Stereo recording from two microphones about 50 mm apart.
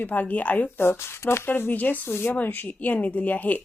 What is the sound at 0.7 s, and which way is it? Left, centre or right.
Speech, left.